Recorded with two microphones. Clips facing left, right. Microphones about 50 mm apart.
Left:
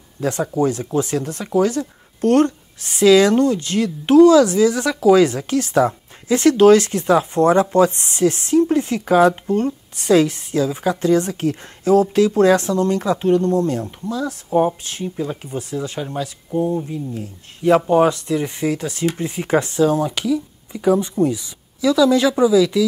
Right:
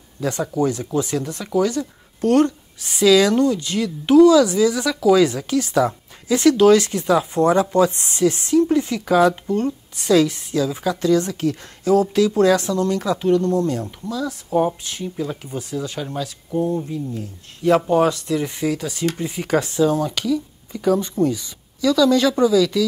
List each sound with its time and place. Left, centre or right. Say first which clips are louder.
0.2 s speech: left 2 dB; left
15.0 s speech: left 2 dB; centre